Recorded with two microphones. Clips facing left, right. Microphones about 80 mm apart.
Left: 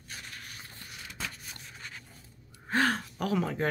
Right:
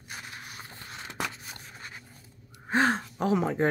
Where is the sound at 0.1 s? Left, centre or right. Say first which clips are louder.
Right 3 dB; right.